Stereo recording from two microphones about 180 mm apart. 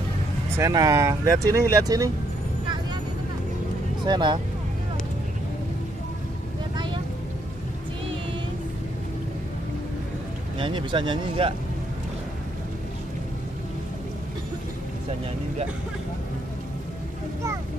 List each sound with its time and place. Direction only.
0.6 s speech: 20° right (ahead or behind)
4.0 s speech: 25° right (ahead or behind)
10.6 s speech: 25° right (ahead or behind)